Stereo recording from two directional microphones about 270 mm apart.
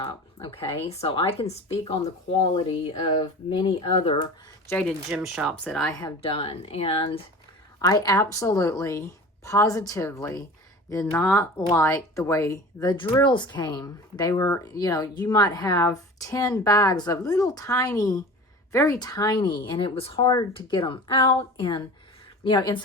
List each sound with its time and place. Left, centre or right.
0.0 s speech: centre
4.7 s speech: centre
6.0 s speech: centre